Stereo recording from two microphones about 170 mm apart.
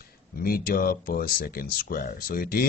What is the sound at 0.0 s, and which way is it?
Speech, 60° left (ahead or behind).